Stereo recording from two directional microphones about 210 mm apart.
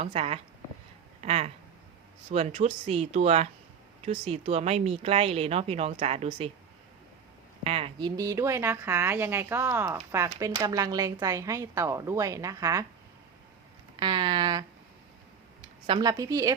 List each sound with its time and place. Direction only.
0.0 s speech: 25° right (ahead or behind)
7.6 s speech: 25° right (ahead or behind)
14.0 s speech: 20° right (ahead or behind)
15.9 s speech: 20° right (ahead or behind)